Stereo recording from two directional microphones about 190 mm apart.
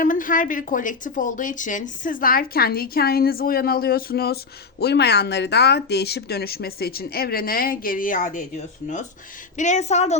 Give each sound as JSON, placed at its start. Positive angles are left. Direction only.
{"t": 0.0, "sound": "a woman's voice", "side_deg": 45}
{"t": 9.6, "sound": "a woman's voice", "side_deg": 35}